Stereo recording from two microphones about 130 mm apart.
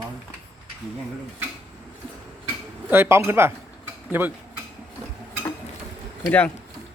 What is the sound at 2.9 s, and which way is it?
A man's voice, 20° right (ahead or behind).